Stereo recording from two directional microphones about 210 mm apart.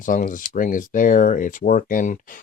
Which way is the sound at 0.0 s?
40° left (ahead or behind).